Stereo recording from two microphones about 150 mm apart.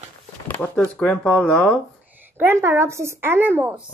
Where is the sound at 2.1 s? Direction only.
15° right (ahead or behind).